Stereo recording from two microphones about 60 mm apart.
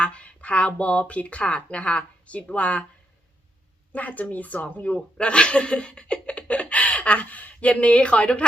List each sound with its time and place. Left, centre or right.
0.0 s speech: centre
3.9 s speech: left